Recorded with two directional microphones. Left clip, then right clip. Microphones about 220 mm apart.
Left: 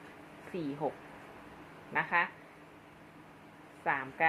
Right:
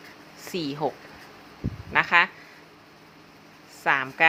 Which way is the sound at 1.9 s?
40° right (ahead or behind).